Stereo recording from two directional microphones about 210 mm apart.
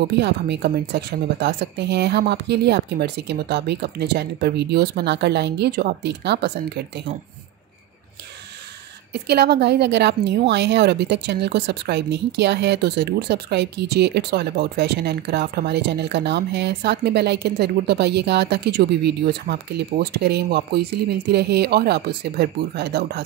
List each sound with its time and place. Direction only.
0.1 s a woman's voice: 50° right (ahead or behind)
9.1 s a woman's voice: 50° right (ahead or behind)